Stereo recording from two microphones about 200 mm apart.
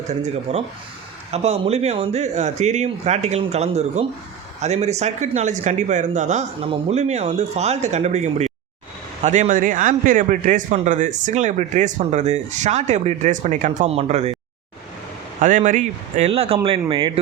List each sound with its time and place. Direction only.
0.1 s a man's voice: 35° right (ahead or behind)
15.4 s a man's voice: 40° right (ahead or behind)